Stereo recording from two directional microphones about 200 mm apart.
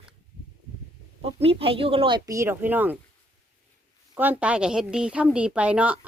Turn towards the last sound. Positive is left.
turn(degrees=-5)  # may be behind; listen again after turning